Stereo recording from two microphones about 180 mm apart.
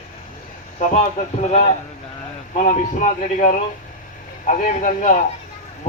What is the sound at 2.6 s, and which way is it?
A man's voice, 45° left (ahead or behind).